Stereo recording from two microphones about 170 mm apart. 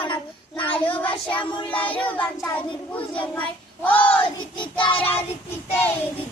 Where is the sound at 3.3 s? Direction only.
10° left (ahead or behind).